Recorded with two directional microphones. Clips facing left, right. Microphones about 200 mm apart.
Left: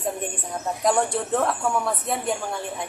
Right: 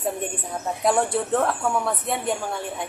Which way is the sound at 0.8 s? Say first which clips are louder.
Right 1 dB; 5° right (ahead or behind).